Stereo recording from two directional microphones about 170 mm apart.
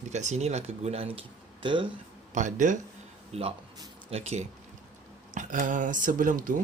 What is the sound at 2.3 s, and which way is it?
Speech, 45° right (ahead or behind).